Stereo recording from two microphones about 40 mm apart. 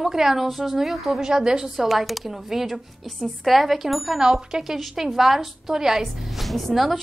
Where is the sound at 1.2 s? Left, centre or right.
Centre.